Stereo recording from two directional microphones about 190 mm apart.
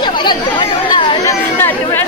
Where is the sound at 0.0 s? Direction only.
25° left (ahead or behind).